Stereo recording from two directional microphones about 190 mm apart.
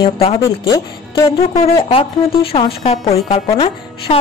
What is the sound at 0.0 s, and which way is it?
Speech, 30° left (ahead or behind).